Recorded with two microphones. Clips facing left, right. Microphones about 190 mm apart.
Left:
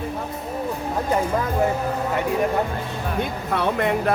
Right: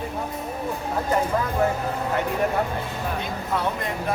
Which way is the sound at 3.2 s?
65° left (ahead or behind).